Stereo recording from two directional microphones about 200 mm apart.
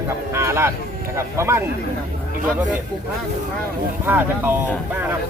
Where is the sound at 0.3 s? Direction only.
15° right (ahead or behind).